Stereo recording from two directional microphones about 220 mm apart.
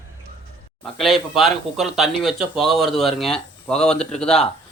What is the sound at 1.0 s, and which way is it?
Speech, centre (ahead or behind).